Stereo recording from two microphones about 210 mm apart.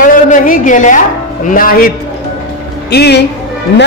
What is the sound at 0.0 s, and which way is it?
A woman's voice, 40° left (ahead or behind).